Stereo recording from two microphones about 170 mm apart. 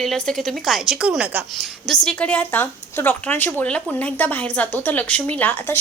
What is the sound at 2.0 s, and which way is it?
A woman's voice, 10° left (ahead or behind).